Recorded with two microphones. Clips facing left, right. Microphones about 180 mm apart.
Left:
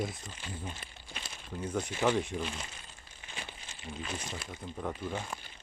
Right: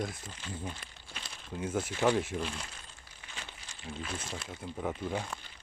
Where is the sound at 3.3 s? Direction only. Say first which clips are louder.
Left 2 dB; 15° left (ahead or behind).